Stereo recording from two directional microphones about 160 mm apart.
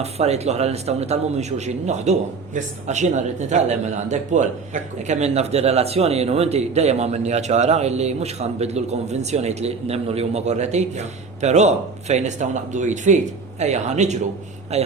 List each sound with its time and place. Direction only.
0.0 s a man's voice: 40° right (ahead or behind)